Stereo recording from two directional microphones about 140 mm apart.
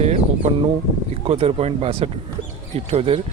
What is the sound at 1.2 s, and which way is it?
Speech, 45° right (ahead or behind).